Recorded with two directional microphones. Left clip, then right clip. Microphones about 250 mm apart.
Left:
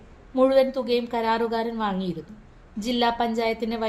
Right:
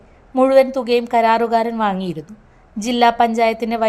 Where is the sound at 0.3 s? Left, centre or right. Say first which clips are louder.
Right 7 dB; right.